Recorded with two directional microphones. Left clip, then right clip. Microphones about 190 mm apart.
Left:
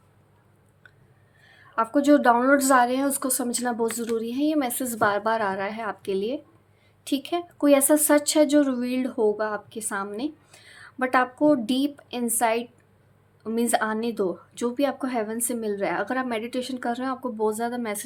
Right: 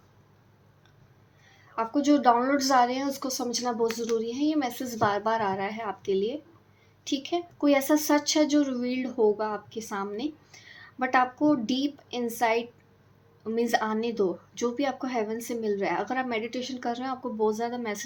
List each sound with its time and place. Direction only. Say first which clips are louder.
1.7 s a woman's voice: left 5 dB; 30° left (ahead or behind)